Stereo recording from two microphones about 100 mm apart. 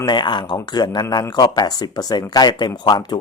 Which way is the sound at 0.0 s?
50° left (ahead or behind).